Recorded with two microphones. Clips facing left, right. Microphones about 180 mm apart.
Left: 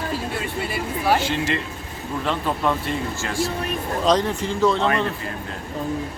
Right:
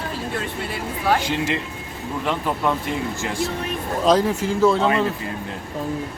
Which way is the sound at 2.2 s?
10° right (ahead or behind).